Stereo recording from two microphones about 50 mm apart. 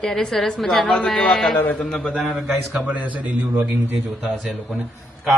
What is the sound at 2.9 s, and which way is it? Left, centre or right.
A man's voice, right.